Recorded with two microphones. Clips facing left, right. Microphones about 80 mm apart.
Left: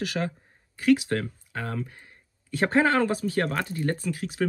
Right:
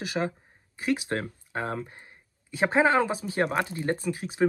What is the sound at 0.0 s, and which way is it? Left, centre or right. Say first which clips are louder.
Speech: even; right.